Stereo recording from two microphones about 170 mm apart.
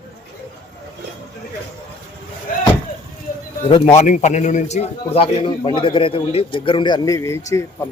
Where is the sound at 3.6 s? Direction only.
35° left (ahead or behind).